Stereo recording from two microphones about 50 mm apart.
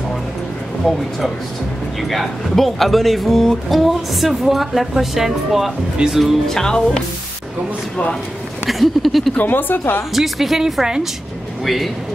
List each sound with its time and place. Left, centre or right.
0.8 s speech: centre
6.5 s speech: centre
8.6 s speech: centre
9.4 s speech: left
10.1 s speech: centre